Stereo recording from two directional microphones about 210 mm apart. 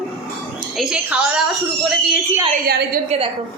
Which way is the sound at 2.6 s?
45° right (ahead or behind).